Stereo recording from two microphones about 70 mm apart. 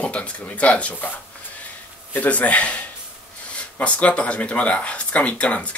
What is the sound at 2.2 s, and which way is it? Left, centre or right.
Speech, left.